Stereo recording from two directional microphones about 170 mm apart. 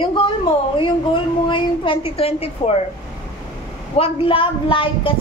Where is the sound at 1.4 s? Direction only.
30° left (ahead or behind).